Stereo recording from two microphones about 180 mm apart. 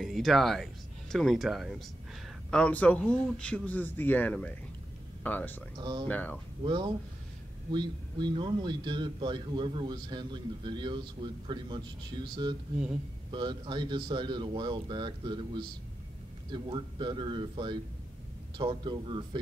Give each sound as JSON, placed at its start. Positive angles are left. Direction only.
{"t": 0.0, "sound": "a man's voice", "side_deg": 0}
{"t": 5.8, "sound": "a man's voice", "side_deg": -25}
{"t": 6.0, "sound": "a man's voice", "side_deg": 10}
{"t": 6.6, "sound": "a man's voice", "side_deg": -25}